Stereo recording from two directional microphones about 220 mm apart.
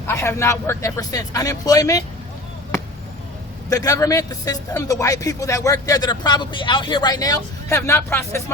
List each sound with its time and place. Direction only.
0.1 s a man's voice: 10° left (ahead or behind)
2.7 s basketball bounce: 10° left (ahead or behind)
3.7 s a man's voice: 15° left (ahead or behind)